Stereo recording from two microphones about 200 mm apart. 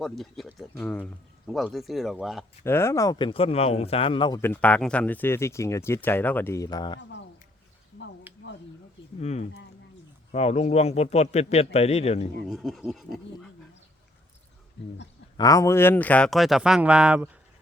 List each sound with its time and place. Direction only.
0.0 s speech: centre (ahead or behind)
2.6 s speech: 10° left (ahead or behind)
4.4 s speech: 10° left (ahead or behind)
8.3 s a sound: 10° right (ahead or behind)
9.2 s a man's voice: 35° left (ahead or behind)
12.5 s speech: centre (ahead or behind)
15.4 s speech: 15° left (ahead or behind); by 17.2 s 5° right (ahead or behind)